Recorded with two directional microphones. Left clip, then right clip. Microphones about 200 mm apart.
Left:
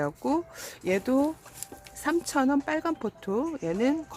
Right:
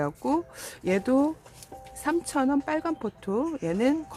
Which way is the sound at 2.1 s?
5° right (ahead or behind).